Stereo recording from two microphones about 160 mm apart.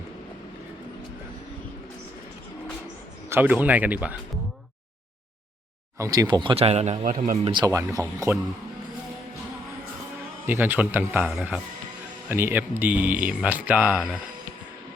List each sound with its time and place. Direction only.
3.2 s speech: 10° right (ahead or behind)
6.0 s speech: 20° right (ahead or behind); by 7.3 s 55° right (ahead or behind)
7.4 s speech: 30° right (ahead or behind)
7.7 s speech: 20° right (ahead or behind)
10.4 s speech: 10° right (ahead or behind)